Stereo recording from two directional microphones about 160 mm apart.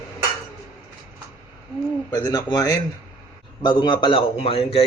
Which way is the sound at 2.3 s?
25° left (ahead or behind).